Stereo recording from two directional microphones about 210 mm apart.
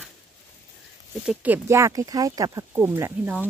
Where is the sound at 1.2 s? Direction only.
10° right (ahead or behind).